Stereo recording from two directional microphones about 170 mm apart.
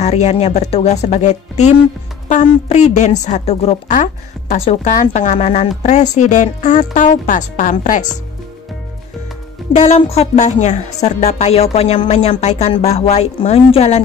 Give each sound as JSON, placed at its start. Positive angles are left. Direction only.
{"t": 0.0, "sound": "a woman's voice", "side_deg": 40}
{"t": 9.7, "sound": "a woman's voice", "side_deg": 40}